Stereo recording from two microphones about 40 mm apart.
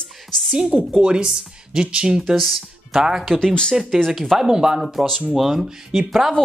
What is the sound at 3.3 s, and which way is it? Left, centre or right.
Speech, centre.